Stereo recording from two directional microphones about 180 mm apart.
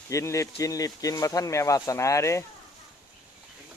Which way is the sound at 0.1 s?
15° left (ahead or behind).